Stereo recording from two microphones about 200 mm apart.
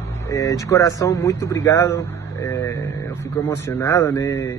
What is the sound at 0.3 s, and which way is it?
Speech, 15° left (ahead or behind).